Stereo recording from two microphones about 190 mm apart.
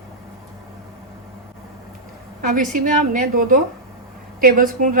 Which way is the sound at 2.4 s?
45° right (ahead or behind).